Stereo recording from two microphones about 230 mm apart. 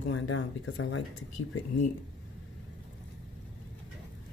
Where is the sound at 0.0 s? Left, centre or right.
Left.